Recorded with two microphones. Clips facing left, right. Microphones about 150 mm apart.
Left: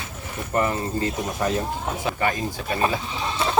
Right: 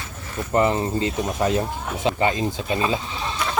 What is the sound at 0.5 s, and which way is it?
Speech, 20° right (ahead or behind).